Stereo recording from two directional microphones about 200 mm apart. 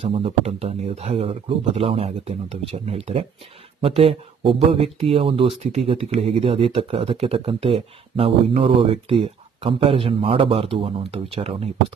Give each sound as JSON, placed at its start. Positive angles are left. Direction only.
{"t": 0.0, "sound": "speech", "side_deg": -30}